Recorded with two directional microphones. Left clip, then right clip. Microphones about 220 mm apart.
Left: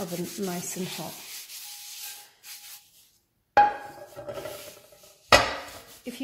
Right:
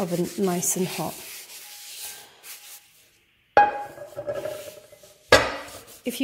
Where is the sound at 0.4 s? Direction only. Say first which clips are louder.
Right 9 dB; 40° right (ahead or behind).